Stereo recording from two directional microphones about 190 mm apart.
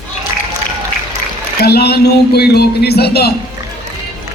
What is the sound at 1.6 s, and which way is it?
A man's voice, 55° left (ahead or behind).